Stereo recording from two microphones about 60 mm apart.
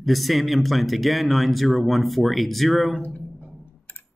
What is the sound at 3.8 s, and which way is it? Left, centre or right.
Music, left.